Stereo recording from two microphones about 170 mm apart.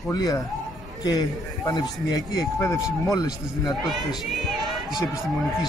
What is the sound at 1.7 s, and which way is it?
Speech, 25° left (ahead or behind).